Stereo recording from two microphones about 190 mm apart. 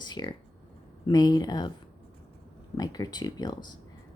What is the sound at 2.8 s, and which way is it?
Speech, 20° left (ahead or behind).